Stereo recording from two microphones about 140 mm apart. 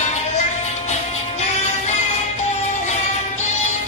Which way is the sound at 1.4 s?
55° left (ahead or behind).